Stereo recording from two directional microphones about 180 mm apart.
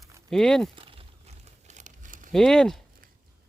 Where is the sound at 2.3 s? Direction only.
Centre (ahead or behind).